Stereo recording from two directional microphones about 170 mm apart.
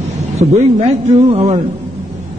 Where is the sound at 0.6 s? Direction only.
40° right (ahead or behind).